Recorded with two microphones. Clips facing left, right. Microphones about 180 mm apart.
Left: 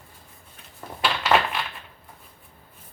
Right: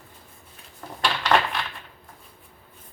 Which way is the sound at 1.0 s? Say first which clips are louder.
Even; 5° left (ahead or behind).